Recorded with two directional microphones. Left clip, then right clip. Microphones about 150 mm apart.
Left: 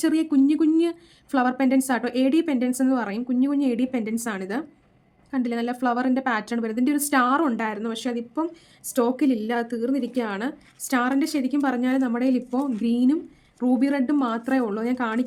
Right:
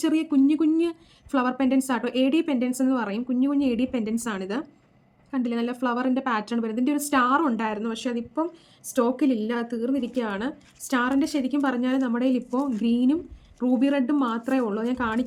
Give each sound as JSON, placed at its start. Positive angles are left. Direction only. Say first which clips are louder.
{"t": 0.0, "sound": "speech", "louder": "left 1 dB", "side_deg": 40}